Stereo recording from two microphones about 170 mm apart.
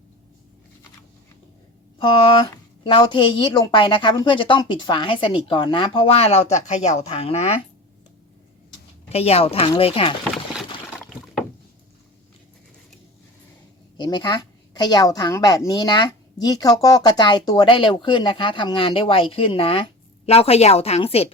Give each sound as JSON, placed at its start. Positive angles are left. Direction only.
{"t": 2.8, "sound": "a woman's voice", "side_deg": 30}
{"t": 9.0, "sound": "speech", "side_deg": 35}
{"t": 10.3, "sound": "a sound", "side_deg": -5}
{"t": 11.0, "sound": "rowboat", "side_deg": 5}
{"t": 13.9, "sound": "a woman's voice", "side_deg": 25}